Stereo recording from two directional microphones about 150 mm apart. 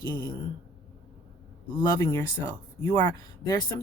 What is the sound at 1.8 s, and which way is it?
Speech, 15° left (ahead or behind).